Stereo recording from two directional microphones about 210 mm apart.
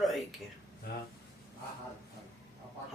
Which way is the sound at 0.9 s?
50° left (ahead or behind).